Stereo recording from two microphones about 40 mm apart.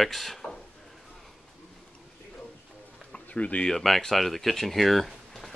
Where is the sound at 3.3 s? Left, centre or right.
Left.